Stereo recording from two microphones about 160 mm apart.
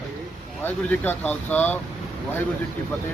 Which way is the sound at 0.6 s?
10° left (ahead or behind).